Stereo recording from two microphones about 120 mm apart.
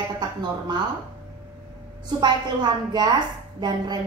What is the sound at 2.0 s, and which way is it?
A woman's voice, 40° right (ahead or behind).